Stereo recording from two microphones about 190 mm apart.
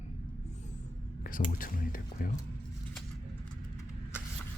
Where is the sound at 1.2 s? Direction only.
45° left (ahead or behind).